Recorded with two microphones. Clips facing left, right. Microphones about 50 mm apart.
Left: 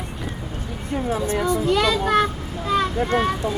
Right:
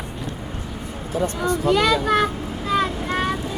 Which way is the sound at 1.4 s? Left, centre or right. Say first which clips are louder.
Left 1 dB; right.